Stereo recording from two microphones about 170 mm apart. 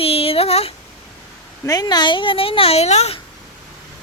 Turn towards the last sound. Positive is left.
turn(degrees=40)  # may be behind; listen again after turning